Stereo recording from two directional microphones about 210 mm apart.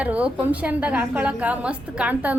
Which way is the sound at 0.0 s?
5° right (ahead or behind).